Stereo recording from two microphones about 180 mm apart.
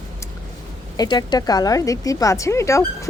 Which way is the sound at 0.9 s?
20° left (ahead or behind).